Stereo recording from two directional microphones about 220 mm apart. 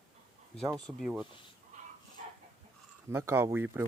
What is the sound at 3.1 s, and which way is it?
Speech, 10° right (ahead or behind).